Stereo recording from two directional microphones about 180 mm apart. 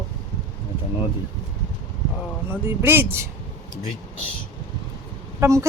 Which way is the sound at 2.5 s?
10° right (ahead or behind).